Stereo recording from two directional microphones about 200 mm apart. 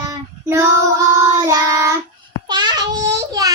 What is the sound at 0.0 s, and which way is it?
Child singing, 15° right (ahead or behind).